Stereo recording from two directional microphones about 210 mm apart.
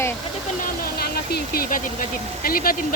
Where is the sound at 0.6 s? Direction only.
45° left (ahead or behind).